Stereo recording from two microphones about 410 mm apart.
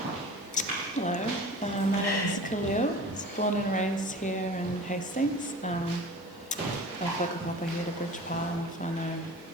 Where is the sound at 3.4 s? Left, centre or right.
Centre.